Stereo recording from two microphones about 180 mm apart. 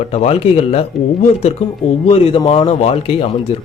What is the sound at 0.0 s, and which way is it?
Speech, 35° left (ahead or behind).